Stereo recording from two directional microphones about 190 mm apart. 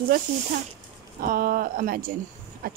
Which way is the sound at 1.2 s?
50° right (ahead or behind).